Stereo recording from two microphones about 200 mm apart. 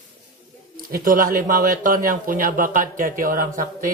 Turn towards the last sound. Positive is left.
turn(degrees=-45)  # may be behind; listen again after turning